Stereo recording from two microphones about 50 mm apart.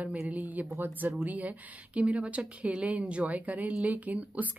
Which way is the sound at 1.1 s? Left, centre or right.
Right.